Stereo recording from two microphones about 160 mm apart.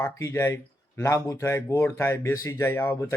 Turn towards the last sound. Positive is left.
turn(degrees=15)  # may be behind; listen again after turning